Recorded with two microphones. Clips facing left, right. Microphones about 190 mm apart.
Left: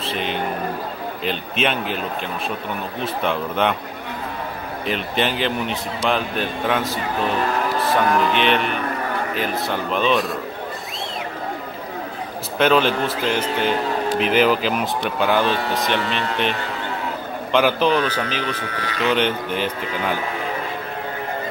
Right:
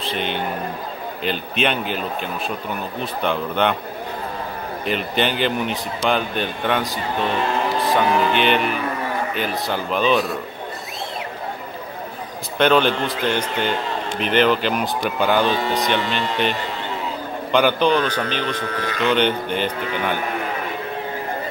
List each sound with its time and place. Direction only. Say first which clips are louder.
0.0 s a sound: even; centre (ahead or behind)
1.2 s a man's voice: right 1 dB; centre (ahead or behind)
4.8 s a man's voice: right 1 dB; centre (ahead or behind)
12.5 s a man's voice: even; centre (ahead or behind)
18.4 s speech: right 2 dB; 40° right (ahead or behind)
19.0 s a man's voice: right 1 dB; centre (ahead or behind)